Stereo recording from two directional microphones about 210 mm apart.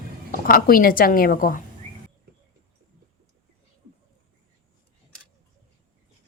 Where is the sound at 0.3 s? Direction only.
40° left (ahead or behind).